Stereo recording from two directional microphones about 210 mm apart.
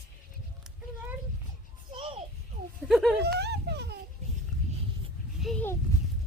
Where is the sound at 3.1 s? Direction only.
50° right (ahead or behind).